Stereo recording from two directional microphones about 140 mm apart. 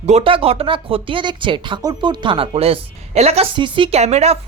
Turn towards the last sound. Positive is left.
turn(degrees=-50)  # may be behind; listen again after turning